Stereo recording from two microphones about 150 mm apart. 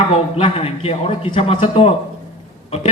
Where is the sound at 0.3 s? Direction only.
40° left (ahead or behind).